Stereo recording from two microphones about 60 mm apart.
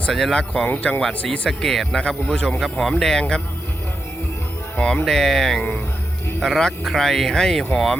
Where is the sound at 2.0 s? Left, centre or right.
Left.